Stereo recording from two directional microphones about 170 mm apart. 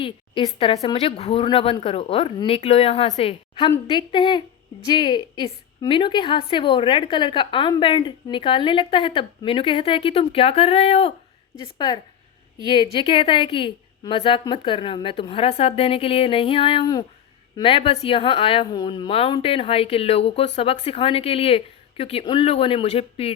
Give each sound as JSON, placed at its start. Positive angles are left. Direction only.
{"t": 0.0, "sound": "a woman's voice", "side_deg": 30}